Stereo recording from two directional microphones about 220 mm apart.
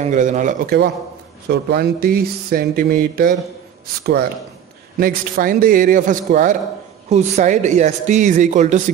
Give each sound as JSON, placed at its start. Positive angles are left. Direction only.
{"t": 0.0, "sound": "speech", "side_deg": -35}
{"t": 1.5, "sound": "speech", "side_deg": -45}